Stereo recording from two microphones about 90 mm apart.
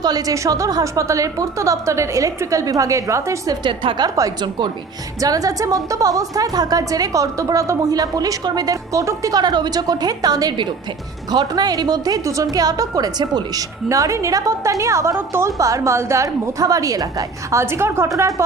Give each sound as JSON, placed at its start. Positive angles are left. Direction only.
{"t": 0.0, "sound": "a woman's voice", "side_deg": -45}
{"t": 3.6, "sound": "a woman's voice", "side_deg": -60}
{"t": 4.1, "sound": "a woman's voice", "side_deg": -45}
{"t": 13.8, "sound": "a woman's voice", "side_deg": -35}
{"t": 17.6, "sound": "a woman's voice", "side_deg": -30}